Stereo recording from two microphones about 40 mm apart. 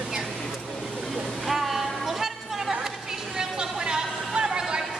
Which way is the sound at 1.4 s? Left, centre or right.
Centre.